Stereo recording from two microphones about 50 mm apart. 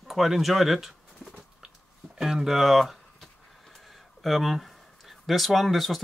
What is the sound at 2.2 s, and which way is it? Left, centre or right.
Speech, centre.